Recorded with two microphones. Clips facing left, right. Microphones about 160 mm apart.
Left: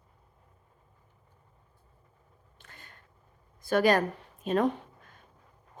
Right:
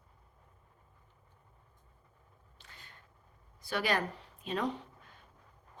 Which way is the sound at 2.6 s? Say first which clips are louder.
Left 4 dB; 50° left (ahead or behind).